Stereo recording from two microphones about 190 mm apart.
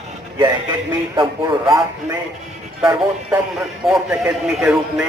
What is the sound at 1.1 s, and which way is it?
Speech, 25° right (ahead or behind).